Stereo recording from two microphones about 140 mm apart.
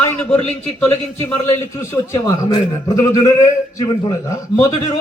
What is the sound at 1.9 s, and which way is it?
A man's voice, 25° left (ahead or behind).